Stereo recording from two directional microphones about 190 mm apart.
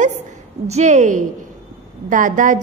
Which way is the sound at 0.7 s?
35° right (ahead or behind).